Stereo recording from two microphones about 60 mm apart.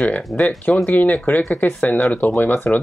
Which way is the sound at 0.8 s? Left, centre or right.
Left.